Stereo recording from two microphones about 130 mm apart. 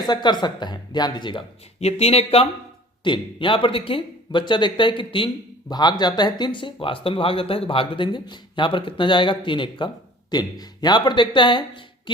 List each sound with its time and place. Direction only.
0.1 s speech: 35° left (ahead or behind)
1.8 s speech: 55° left (ahead or behind)
3.0 s speech: 40° left (ahead or behind)